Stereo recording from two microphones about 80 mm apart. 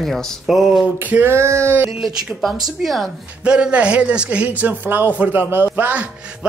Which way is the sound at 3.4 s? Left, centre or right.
Centre.